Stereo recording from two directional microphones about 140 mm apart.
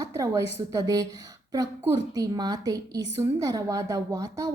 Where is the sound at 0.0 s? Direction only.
25° right (ahead or behind).